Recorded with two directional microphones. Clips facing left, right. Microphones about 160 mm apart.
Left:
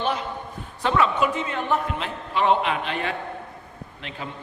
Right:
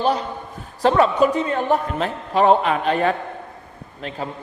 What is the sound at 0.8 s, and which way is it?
A man's voice, 40° right (ahead or behind).